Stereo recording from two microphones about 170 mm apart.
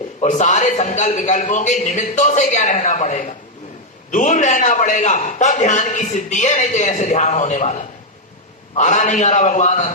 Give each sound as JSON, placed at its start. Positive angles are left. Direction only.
{"t": 0.2, "sound": "a man's voice", "side_deg": 45}